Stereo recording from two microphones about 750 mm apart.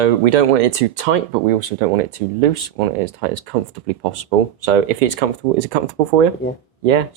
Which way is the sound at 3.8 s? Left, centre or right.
Right.